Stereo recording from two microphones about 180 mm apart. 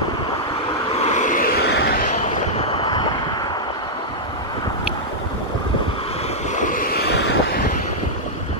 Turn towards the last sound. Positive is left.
turn(degrees=75)  # may be behind; listen again after turning